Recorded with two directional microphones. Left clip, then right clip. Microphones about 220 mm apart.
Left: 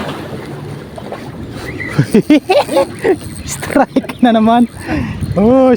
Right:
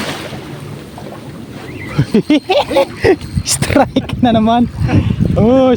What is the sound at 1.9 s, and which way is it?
Speech, centre (ahead or behind).